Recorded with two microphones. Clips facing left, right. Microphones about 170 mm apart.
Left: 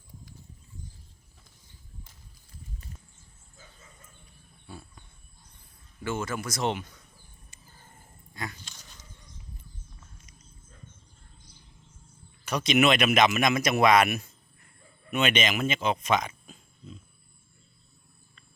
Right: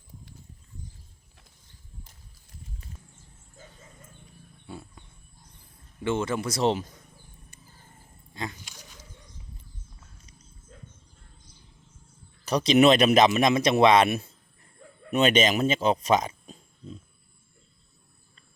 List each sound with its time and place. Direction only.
4.6 s wild animals: 25° right (ahead or behind)
6.0 s speech: 30° right (ahead or behind)
8.3 s a sound: 25° right (ahead or behind)
12.5 s speech: 35° right (ahead or behind)